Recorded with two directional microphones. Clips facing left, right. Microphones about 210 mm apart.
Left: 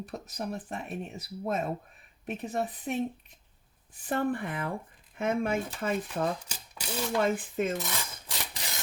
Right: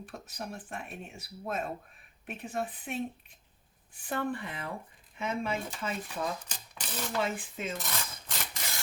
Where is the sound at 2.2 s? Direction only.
40° left (ahead or behind).